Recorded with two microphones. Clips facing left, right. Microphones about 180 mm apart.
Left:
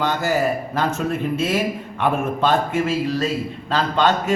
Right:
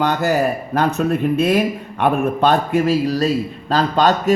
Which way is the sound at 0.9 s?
60° right (ahead or behind).